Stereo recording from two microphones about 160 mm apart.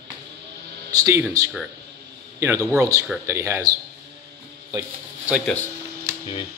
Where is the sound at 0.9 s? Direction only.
20° right (ahead or behind).